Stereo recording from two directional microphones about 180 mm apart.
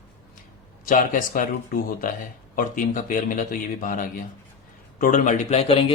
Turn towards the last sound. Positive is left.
turn(degrees=35)  # may be behind; listen again after turning